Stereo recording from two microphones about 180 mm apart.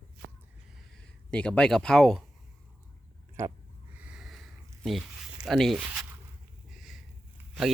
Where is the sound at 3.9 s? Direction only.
5° right (ahead or behind).